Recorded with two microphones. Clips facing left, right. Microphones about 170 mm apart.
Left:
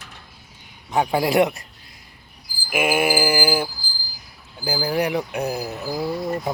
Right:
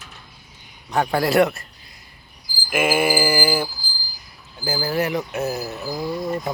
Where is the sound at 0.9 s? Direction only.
15° left (ahead or behind).